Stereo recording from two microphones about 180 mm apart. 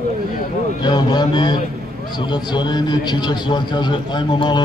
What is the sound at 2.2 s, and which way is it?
A man's voice, 25° left (ahead or behind).